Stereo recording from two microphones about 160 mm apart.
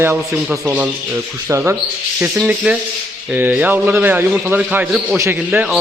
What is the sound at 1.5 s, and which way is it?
A man's voice, 15° right (ahead or behind).